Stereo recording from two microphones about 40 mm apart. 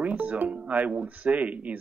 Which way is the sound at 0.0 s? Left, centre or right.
Right.